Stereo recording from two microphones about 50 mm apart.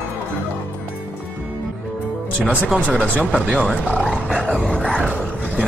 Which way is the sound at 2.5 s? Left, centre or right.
Right.